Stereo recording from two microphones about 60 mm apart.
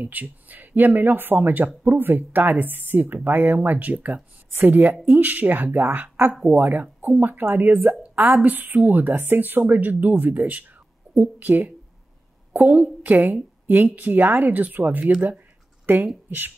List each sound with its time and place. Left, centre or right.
0.0 s speech: right
5.8 s speech: right